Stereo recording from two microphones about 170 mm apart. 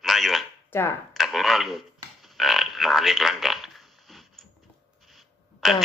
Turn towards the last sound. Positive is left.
turn(degrees=0)  # may be behind; listen again after turning